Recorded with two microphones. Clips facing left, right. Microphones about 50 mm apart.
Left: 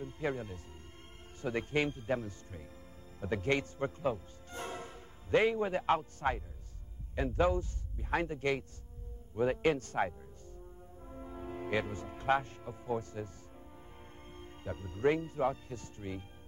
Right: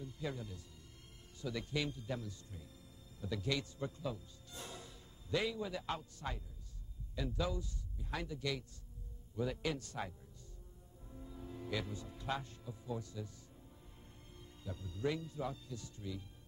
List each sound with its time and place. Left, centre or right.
0.0 s a man's voice: left
11.1 s music: left
14.3 s speech: left